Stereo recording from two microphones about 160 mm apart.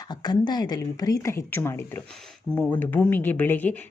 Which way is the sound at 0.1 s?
25° left (ahead or behind).